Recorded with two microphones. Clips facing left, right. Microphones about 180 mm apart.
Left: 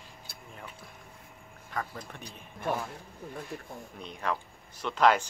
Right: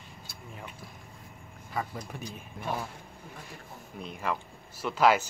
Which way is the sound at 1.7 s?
10° right (ahead or behind).